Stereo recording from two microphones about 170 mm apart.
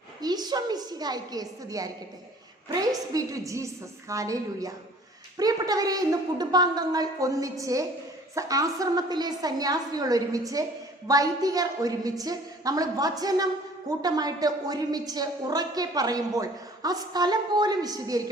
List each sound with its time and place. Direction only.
0.2 s a woman's voice: 25° right (ahead or behind)